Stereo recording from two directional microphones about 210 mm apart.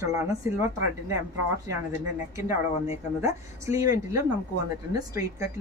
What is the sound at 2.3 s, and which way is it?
Speech, 15° right (ahead or behind).